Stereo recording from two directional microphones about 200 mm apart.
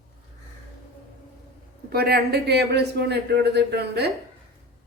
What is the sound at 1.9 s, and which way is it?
A man's voice, 50° right (ahead or behind).